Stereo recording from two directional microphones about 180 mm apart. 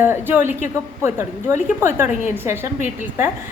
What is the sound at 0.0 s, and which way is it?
Speech, 10° right (ahead or behind).